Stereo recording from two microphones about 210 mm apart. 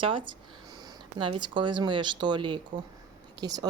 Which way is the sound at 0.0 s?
25° right (ahead or behind).